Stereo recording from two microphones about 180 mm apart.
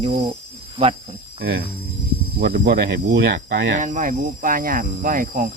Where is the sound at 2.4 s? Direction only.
55° right (ahead or behind).